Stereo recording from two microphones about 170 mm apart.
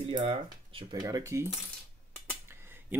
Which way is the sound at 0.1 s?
30° right (ahead or behind).